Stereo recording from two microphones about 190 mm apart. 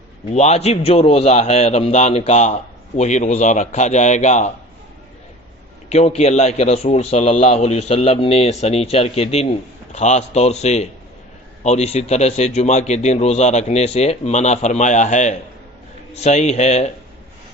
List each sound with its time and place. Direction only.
0.3 s a man's voice: 35° left (ahead or behind)
5.9 s a man's voice: 35° left (ahead or behind)